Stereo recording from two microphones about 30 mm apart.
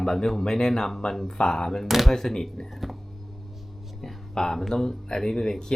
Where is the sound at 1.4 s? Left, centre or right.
Left.